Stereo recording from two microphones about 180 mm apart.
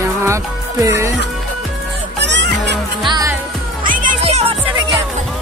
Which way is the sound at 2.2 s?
75° right (ahead or behind).